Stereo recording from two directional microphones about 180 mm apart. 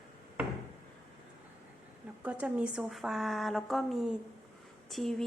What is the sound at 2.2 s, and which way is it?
Speech, 5° right (ahead or behind).